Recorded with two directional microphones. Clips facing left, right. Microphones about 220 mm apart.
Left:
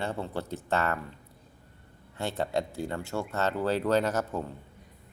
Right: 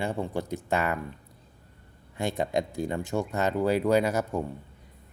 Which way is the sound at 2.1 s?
15° right (ahead or behind).